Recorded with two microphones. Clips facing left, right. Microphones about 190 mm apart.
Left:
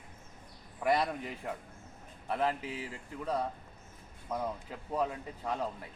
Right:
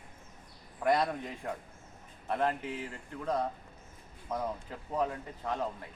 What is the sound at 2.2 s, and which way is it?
Speech, 5° left (ahead or behind).